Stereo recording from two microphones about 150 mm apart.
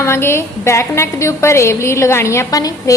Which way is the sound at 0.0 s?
15° left (ahead or behind).